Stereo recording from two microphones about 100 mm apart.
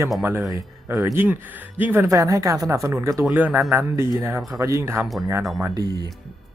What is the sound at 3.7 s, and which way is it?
Speech, 30° right (ahead or behind).